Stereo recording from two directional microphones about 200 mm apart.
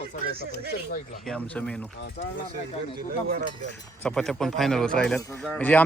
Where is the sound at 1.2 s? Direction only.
5° left (ahead or behind).